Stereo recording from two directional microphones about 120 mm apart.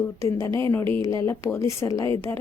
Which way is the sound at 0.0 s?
25° left (ahead or behind).